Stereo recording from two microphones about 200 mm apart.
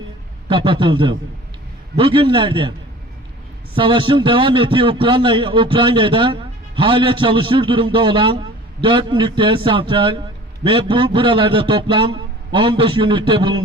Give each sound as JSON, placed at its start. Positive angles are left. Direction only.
{"t": 0.4, "sound": "a man's voice", "side_deg": -25}
{"t": 3.8, "sound": "a man's voice", "side_deg": -25}